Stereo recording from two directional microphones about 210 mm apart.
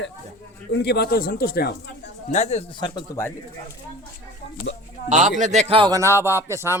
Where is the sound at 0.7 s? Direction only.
50° left (ahead or behind).